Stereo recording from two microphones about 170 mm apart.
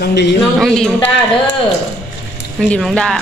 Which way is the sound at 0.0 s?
80° left.